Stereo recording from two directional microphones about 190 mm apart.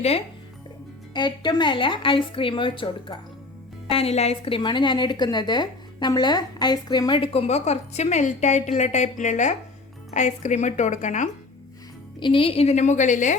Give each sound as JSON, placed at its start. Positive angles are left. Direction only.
{"t": 1.1, "sound": "a woman's voice", "side_deg": 25}
{"t": 12.2, "sound": "a woman's voice", "side_deg": 25}